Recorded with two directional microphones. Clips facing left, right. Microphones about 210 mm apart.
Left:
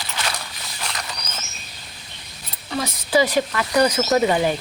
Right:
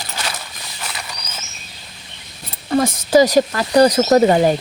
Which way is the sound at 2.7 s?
50° right (ahead or behind).